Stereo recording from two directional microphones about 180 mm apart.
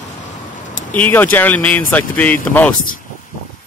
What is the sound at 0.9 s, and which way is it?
Speech, 10° left (ahead or behind).